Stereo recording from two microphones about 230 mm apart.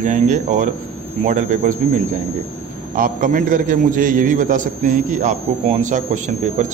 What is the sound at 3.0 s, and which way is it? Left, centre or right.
A man's voice, right.